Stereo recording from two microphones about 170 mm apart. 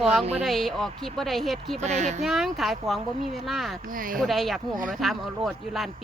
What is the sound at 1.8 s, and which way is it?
Speech, 40° right (ahead or behind).